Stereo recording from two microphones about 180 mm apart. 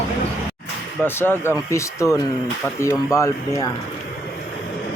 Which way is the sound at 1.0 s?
10° left (ahead or behind).